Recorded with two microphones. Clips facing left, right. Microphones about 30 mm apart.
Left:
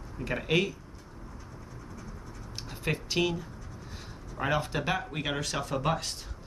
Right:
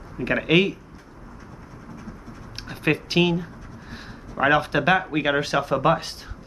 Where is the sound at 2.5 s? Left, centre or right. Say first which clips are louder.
Right 9 dB; right.